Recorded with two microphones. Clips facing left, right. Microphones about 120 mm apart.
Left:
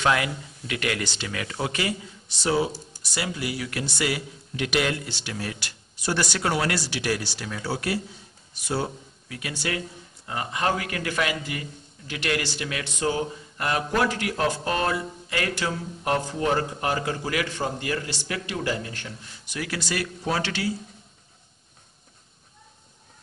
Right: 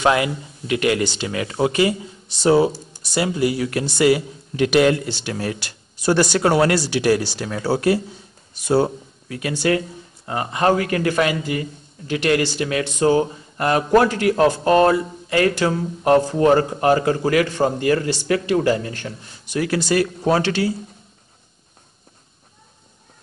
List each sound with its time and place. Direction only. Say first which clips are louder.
0.0 s speech: right 6 dB; 20° right (ahead or behind)
3.0 s speech: right 11 dB; 30° right (ahead or behind); by 19.1 s 50° right (ahead or behind)
19.5 s speech: right 11 dB; 35° right (ahead or behind)